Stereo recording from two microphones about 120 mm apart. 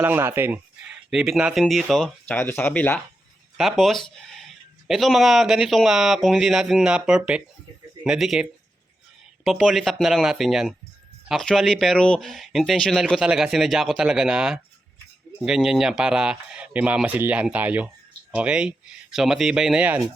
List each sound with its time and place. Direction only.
0.0 s speech: 20° right (ahead or behind); by 2.3 s centre (ahead or behind)
2.3 s speech: 15° left (ahead or behind)
3.6 s speech: centre (ahead or behind)